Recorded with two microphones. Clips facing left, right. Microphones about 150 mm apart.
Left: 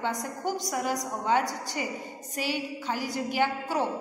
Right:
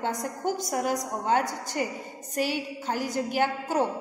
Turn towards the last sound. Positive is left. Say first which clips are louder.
# right 2 dB
turn(degrees=-45)  # may be behind; listen again after turning